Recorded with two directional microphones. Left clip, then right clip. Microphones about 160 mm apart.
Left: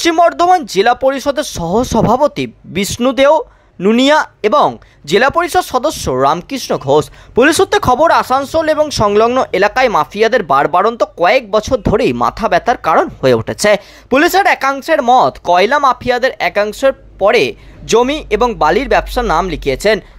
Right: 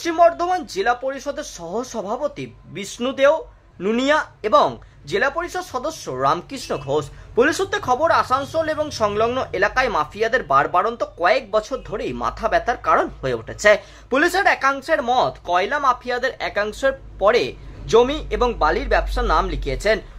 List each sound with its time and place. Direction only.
0.2 s speech: 55° left (ahead or behind)
4.4 s speech: 40° left (ahead or behind)
5.0 s a man's voice: 55° left (ahead or behind)